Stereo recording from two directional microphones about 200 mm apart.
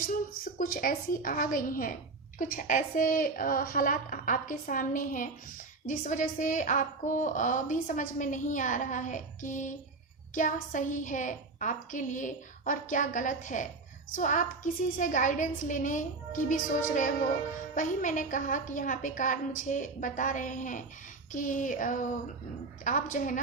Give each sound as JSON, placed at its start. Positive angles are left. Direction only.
{"t": 0.6, "sound": "a woman's voice", "side_deg": 45}